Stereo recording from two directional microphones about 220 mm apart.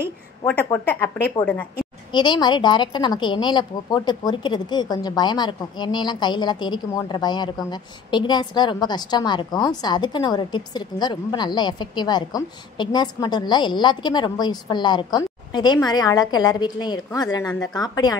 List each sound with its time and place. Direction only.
0.5 s a woman's voice: 5° left (ahead or behind)
2.1 s a woman's voice: 20° left (ahead or behind)